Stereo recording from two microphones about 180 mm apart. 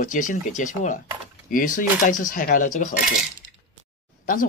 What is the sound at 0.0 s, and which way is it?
Speech, 45° left (ahead or behind).